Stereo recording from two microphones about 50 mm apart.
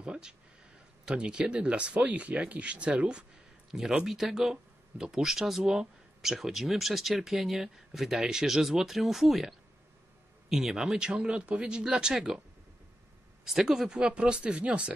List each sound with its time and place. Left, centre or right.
0.0 s a sound: centre
1.0 s speech: centre
3.9 s speech: centre
13.5 s speech: centre
13.8 s speech: right